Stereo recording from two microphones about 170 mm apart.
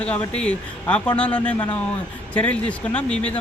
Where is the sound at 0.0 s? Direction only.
5° left (ahead or behind).